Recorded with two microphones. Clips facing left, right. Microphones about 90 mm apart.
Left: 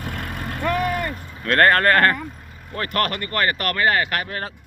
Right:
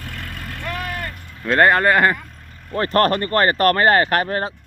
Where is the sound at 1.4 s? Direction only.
10° right (ahead or behind).